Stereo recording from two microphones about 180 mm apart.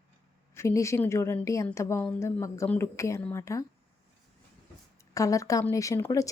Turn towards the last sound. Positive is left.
turn(degrees=15)  # may be behind; listen again after turning